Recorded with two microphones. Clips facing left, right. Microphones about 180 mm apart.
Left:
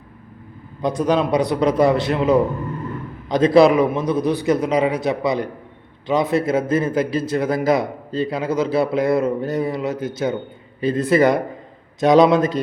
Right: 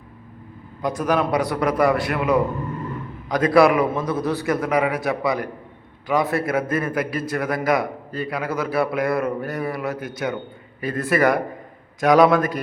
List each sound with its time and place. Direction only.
0.8 s a man's voice: 20° left (ahead or behind)